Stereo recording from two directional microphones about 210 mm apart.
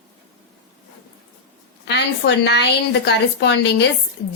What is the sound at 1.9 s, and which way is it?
A woman's voice, 55° left (ahead or behind).